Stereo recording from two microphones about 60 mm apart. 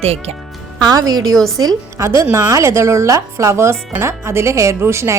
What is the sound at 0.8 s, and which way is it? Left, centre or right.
A woman's voice, right.